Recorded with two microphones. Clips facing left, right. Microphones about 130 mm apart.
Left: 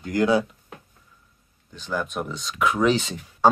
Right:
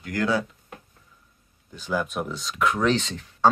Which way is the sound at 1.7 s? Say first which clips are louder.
Right 1 dB; 5° right (ahead or behind).